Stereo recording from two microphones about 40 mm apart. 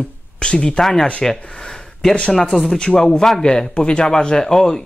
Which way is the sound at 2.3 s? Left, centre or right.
Centre.